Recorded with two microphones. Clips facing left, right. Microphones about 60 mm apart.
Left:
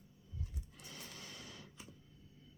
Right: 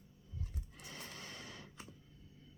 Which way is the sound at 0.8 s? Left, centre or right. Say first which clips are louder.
Right 3 dB; right.